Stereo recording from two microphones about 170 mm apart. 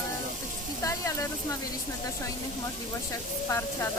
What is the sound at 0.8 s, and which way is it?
Speech, 15° left (ahead or behind).